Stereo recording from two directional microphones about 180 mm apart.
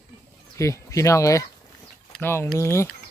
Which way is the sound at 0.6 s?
15° left (ahead or behind).